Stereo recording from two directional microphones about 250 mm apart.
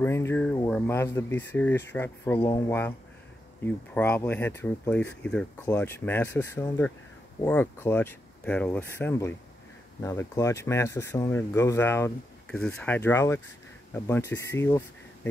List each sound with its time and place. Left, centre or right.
0.0 s speech: centre
2.4 s speech: centre
3.6 s speech: centre